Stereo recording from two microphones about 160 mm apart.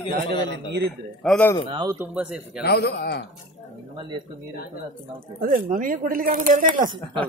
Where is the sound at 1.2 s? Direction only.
Centre (ahead or behind).